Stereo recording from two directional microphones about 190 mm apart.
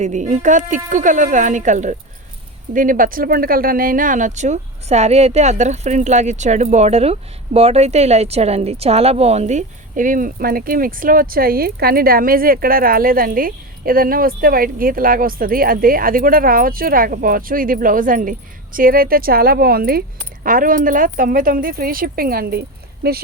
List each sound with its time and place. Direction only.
0.0 s a woman's voice: 40° right (ahead or behind); by 23.2 s 55° right (ahead or behind)